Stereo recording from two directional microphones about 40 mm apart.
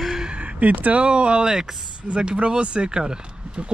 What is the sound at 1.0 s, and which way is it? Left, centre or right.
Speech, right.